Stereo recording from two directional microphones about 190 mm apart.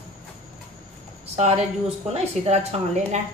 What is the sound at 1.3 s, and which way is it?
A woman's voice, 35° right (ahead or behind).